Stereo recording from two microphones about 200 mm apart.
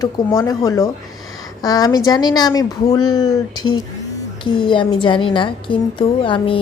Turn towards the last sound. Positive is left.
turn(degrees=25)  # may be behind; listen again after turning